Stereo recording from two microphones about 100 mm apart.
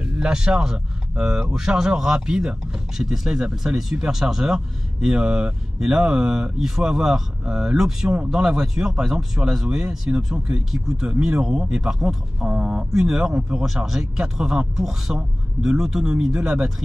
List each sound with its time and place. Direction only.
0.0 s speech: 10° right (ahead or behind)